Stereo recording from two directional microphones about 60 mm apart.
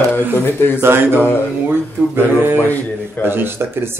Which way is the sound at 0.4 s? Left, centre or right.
Left.